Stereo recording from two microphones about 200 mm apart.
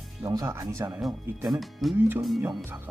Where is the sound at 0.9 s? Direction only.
5° right (ahead or behind).